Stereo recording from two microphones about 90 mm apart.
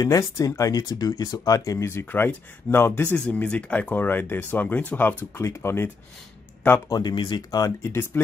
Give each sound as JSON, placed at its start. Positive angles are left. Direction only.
{"t": 0.0, "sound": "speech", "side_deg": 40}
{"t": 5.4, "sound": "speech", "side_deg": 30}
{"t": 6.9, "sound": "speech", "side_deg": 50}
{"t": 7.9, "sound": "speech", "side_deg": 25}